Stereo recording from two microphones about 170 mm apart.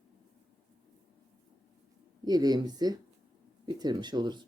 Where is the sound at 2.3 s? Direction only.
25° right (ahead or behind).